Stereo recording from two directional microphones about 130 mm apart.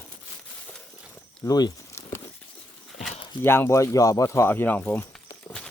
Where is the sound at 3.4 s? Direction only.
20° left (ahead or behind).